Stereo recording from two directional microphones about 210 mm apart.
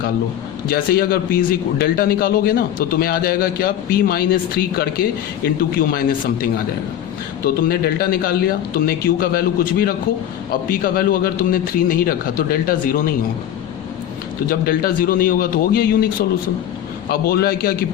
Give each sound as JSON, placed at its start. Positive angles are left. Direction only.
{"t": 0.7, "sound": "a man's voice", "side_deg": 45}
{"t": 14.5, "sound": "a man's voice", "side_deg": 45}
{"t": 17.1, "sound": "a man's voice", "side_deg": 45}